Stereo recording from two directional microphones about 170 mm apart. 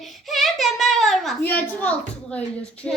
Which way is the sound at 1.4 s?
10° left (ahead or behind).